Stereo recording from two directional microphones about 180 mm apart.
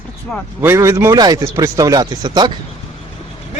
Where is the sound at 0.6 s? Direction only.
15° right (ahead or behind).